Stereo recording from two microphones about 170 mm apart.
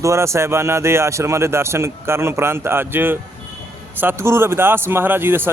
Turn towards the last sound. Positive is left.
turn(degrees=-10)  # may be behind; listen again after turning